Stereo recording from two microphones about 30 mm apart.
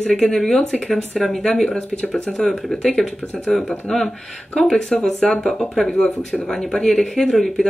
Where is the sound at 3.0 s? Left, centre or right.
Centre.